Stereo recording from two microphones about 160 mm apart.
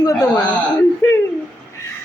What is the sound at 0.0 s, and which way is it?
Male singing, 20° left (ahead or behind).